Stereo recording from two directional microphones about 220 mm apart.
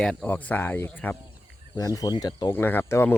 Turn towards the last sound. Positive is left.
turn(degrees=10)  # may be behind; listen again after turning